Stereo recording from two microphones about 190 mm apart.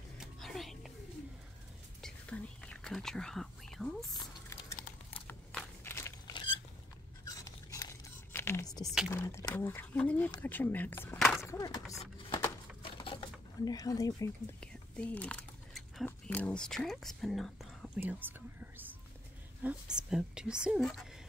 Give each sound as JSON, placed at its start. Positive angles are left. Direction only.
{"t": 0.2, "sound": "whispering", "side_deg": 0}
{"t": 2.0, "sound": "whispering", "side_deg": 5}
{"t": 4.7, "sound": "a sound", "side_deg": 40}
{"t": 5.2, "sound": "a sound", "side_deg": 5}
{"t": 7.2, "sound": "whispering", "side_deg": 20}
{"t": 9.1, "sound": "speech", "side_deg": 15}
{"t": 11.4, "sound": "speech", "side_deg": 20}
{"t": 12.8, "sound": "a sound", "side_deg": 25}
{"t": 14.6, "sound": "whispering", "side_deg": 5}
{"t": 16.1, "sound": "speech", "side_deg": 10}
{"t": 19.6, "sound": "speech", "side_deg": -5}